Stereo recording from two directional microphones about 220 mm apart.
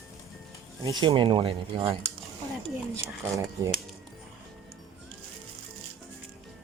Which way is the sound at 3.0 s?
15° right (ahead or behind).